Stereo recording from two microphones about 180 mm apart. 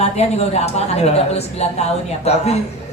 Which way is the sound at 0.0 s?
35° left (ahead or behind).